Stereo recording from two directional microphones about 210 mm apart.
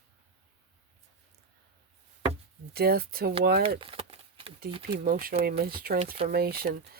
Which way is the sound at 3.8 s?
25° right (ahead or behind).